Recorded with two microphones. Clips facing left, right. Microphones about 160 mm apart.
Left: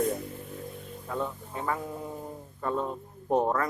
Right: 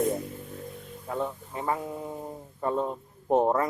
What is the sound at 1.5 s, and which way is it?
Speech, 25° right (ahead or behind).